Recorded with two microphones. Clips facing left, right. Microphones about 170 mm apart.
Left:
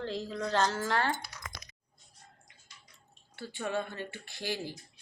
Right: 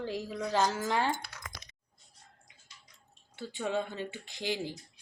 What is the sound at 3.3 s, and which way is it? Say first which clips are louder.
A woman's voice: right 1 dB; 20° right (ahead or behind).